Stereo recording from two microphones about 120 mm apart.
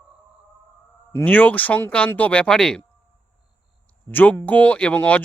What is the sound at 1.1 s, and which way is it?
Speech, 15° left (ahead or behind).